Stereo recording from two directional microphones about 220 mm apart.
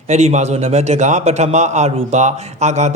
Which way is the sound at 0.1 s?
30° right (ahead or behind).